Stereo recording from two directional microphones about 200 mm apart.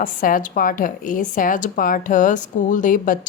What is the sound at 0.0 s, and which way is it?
A woman's voice, 45° left (ahead or behind).